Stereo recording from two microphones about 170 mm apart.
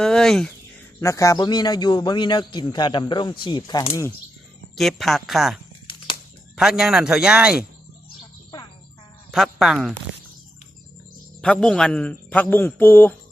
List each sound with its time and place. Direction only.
0.0 s speech: 5° left (ahead or behind)
0.9 s a man's voice: 20° left (ahead or behind)
4.7 s a man's voice: centre (ahead or behind)
6.6 s a man's voice: centre (ahead or behind)
9.3 s a man's voice: centre (ahead or behind)
11.3 s a man's voice: 5° left (ahead or behind)